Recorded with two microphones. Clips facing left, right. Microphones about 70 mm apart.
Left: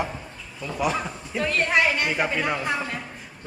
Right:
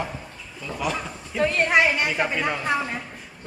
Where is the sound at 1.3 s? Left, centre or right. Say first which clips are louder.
Right 2 dB; centre.